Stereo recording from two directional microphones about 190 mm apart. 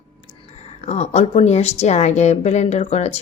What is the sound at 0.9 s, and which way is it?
Speech, 35° left (ahead or behind).